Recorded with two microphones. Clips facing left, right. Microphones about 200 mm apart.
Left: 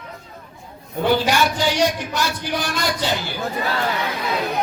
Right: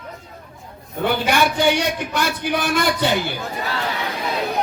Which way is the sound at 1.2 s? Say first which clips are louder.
Right 2 dB; 55° right (ahead or behind).